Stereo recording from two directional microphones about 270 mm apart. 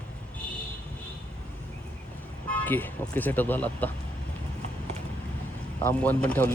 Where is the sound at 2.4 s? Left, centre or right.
Centre.